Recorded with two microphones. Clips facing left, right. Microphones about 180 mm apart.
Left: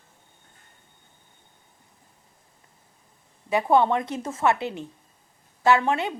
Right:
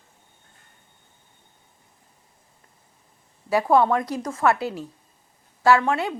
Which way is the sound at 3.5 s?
20° left (ahead or behind).